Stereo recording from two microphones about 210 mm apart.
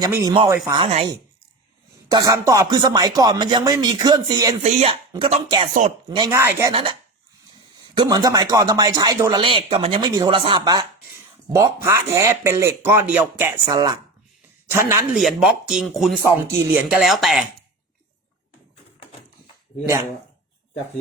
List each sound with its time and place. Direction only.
0.0 s speech: 15° right (ahead or behind)
0.8 s speech: 30° right (ahead or behind)
2.0 s speech: 20° right (ahead or behind)
4.6 s speech: 30° right (ahead or behind); by 6.7 s 15° right (ahead or behind)
7.9 s speech: 20° right (ahead or behind)
15.2 s speech: centre (ahead or behind)